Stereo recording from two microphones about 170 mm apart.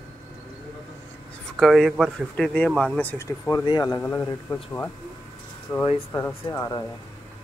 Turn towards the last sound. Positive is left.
turn(degrees=20)  # may be behind; listen again after turning